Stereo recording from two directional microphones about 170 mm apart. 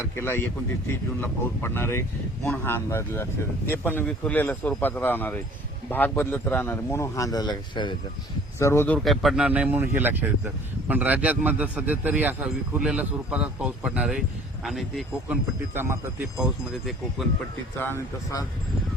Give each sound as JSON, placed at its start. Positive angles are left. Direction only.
{"t": 0.2, "sound": "speech", "side_deg": 15}
{"t": 8.5, "sound": "speech", "side_deg": 15}
{"t": 9.0, "sound": "speech", "side_deg": 0}
{"t": 15.7, "sound": "speech", "side_deg": -15}